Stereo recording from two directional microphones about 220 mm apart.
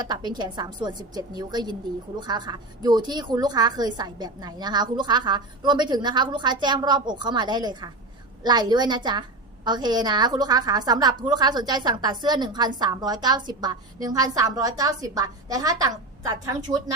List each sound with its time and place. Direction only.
0.0 s a woman's voice: 20° right (ahead or behind)